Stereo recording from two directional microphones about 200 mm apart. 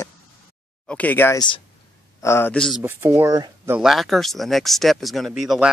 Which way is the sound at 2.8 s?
10° right (ahead or behind).